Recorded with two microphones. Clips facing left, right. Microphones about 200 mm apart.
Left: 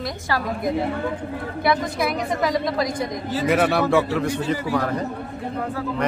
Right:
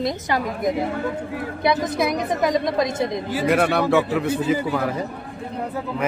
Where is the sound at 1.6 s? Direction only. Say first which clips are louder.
Right 1 dB; 20° right (ahead or behind).